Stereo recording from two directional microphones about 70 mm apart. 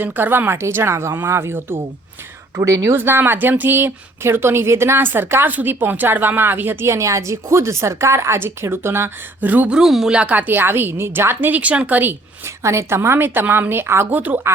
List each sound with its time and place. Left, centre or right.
0.0 s speech: right
2.6 s speech: right
3.0 s speech: right
9.4 s a woman's voice: right
9.6 s speech: centre
10.2 s a woman's voice: right
12.6 s speech: right
14.2 s a woman's voice: right